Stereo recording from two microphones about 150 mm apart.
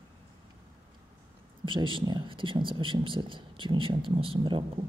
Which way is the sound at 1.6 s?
35° right (ahead or behind).